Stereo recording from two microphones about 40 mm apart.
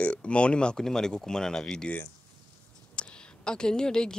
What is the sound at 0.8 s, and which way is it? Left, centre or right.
Speech, centre.